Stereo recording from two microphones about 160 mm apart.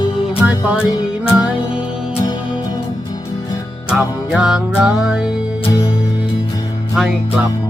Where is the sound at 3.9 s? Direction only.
5° right (ahead or behind).